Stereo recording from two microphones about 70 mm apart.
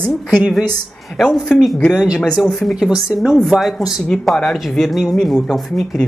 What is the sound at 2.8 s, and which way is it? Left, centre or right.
Speech, centre.